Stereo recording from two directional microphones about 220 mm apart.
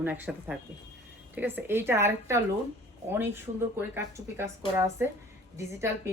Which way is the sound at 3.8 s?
10° right (ahead or behind).